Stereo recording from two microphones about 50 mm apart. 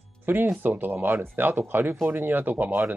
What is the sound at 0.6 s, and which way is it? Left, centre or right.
Speech, right.